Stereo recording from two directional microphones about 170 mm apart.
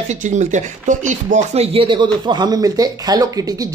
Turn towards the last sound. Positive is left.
turn(degrees=-20)  # may be behind; listen again after turning